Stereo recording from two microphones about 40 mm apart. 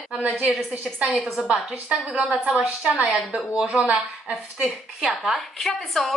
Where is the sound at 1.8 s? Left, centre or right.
Right.